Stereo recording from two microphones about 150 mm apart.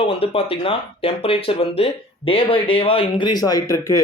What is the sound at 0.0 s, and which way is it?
Speech, 40° left (ahead or behind).